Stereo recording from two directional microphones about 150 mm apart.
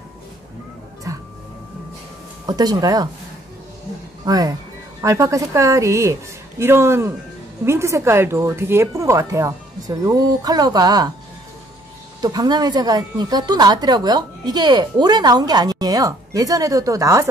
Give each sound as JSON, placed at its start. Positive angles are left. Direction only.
{"t": 1.1, "sound": "music", "side_deg": -20}
{"t": 2.4, "sound": "a woman's voice", "side_deg": -25}
{"t": 4.3, "sound": "a woman's voice", "side_deg": -25}
{"t": 12.2, "sound": "a woman's voice", "side_deg": -25}